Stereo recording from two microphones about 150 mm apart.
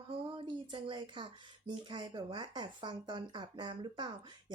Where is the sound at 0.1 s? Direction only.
35° right (ahead or behind).